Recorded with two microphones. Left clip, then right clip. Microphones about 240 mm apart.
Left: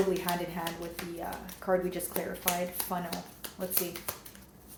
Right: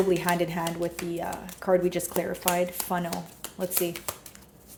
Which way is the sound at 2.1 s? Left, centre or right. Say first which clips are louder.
Right 6 dB; right.